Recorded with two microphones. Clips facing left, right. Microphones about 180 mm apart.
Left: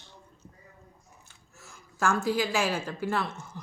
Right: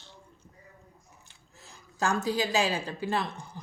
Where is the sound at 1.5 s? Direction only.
15° right (ahead or behind).